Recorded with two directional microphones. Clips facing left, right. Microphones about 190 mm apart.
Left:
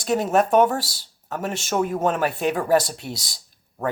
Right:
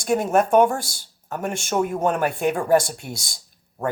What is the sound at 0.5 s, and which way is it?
Speech, 10° right (ahead or behind).